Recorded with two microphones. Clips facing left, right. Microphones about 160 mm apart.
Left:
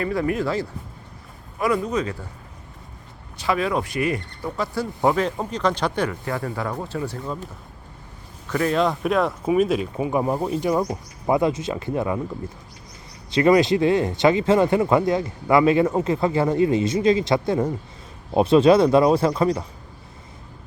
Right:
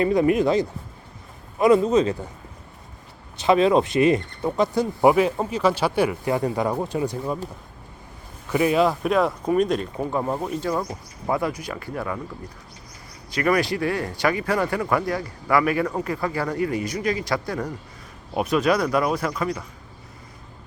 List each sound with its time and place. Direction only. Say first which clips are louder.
0.0 s speech: right 5 dB; 20° right (ahead or behind)
3.3 s speech: right 6 dB; 25° right (ahead or behind)
8.4 s speech: right 2 dB; 10° right (ahead or behind); by 12.2 s 20° left (ahead or behind)
13.3 s speech: left 5 dB; 20° left (ahead or behind)